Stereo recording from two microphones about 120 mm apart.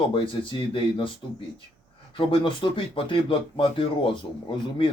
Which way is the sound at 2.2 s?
45° left (ahead or behind).